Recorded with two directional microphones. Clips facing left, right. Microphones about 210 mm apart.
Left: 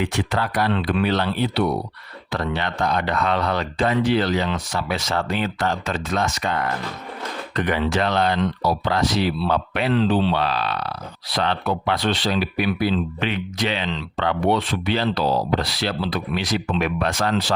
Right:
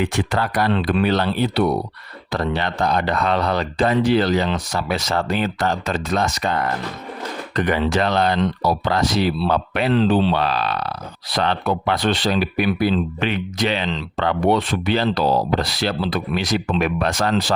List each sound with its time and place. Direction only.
0.0 s speech: 45° right (ahead or behind)